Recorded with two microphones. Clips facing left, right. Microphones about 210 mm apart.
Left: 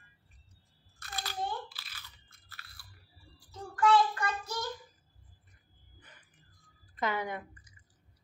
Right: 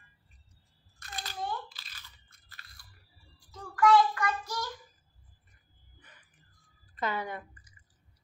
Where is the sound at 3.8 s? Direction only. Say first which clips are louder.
Right 3 dB; 25° left (ahead or behind).